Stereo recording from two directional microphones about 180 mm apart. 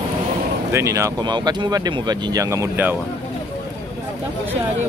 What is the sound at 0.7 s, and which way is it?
Speech, 15° right (ahead or behind).